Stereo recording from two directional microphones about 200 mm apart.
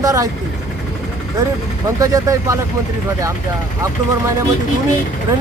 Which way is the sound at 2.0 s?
15° right (ahead or behind).